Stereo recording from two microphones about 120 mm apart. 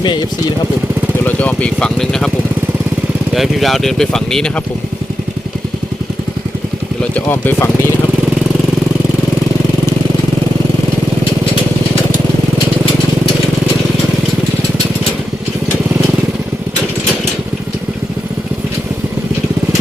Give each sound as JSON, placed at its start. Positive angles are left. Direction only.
{"t": 0.0, "sound": "speech", "side_deg": 40}
{"t": 1.2, "sound": "speech", "side_deg": 15}
{"t": 3.3, "sound": "speech", "side_deg": 0}
{"t": 7.1, "sound": "speech", "side_deg": 15}